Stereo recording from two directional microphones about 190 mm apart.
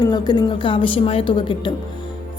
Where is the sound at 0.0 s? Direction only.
25° left (ahead or behind).